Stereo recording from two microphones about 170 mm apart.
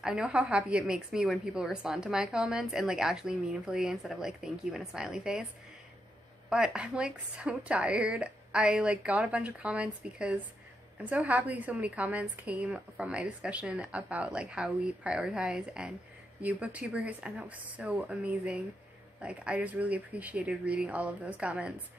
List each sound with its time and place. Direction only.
0.0 s a woman's voice: 5° right (ahead or behind)
6.5 s a woman's voice: 5° right (ahead or behind)